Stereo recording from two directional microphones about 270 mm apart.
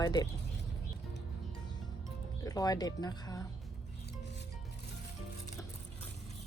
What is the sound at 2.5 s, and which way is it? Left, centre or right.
Speech, centre.